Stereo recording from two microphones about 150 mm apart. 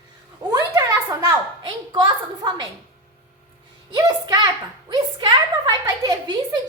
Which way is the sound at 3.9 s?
25° right (ahead or behind).